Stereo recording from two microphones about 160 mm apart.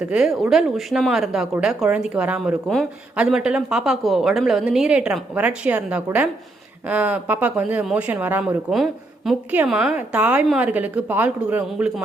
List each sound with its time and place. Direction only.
0.0 s a woman's voice: 5° right (ahead or behind)